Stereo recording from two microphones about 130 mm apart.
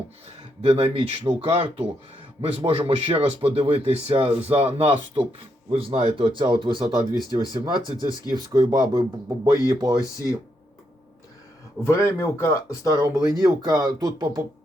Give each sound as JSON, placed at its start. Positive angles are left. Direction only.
{"t": 0.6, "sound": "speech", "side_deg": -45}
{"t": 10.0, "sound": "speech", "side_deg": 25}
{"t": 11.9, "sound": "speech", "side_deg": 20}
{"t": 13.4, "sound": "speech", "side_deg": -30}